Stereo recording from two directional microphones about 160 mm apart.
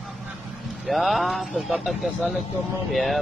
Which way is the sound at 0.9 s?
Centre (ahead or behind).